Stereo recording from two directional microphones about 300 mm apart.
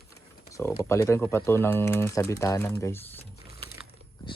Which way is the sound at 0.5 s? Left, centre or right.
Centre.